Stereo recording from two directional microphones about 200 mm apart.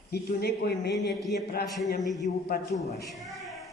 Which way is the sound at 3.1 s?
Centre (ahead or behind).